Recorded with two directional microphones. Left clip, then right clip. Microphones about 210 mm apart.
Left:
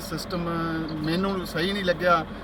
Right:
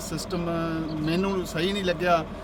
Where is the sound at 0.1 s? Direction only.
20° right (ahead or behind).